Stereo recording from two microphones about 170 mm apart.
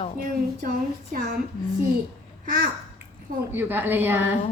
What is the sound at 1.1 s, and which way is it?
Speech, 60° right (ahead or behind).